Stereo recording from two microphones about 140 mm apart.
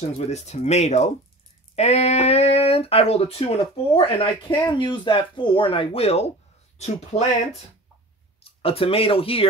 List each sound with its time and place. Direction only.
0.2 s speech: 50° left (ahead or behind)
8.5 s speech: 45° left (ahead or behind)